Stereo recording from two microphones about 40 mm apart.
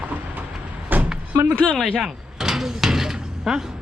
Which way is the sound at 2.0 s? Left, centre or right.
Centre.